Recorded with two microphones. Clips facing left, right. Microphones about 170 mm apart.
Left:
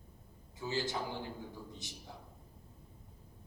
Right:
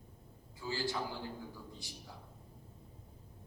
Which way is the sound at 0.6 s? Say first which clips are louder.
Left 1 dB; 20° left (ahead or behind).